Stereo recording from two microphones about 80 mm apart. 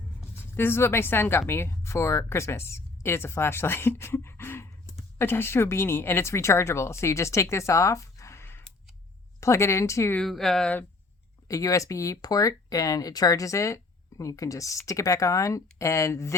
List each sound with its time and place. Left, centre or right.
0.5 s a woman's voice: left
10.2 s speech: centre
11.4 s speech: left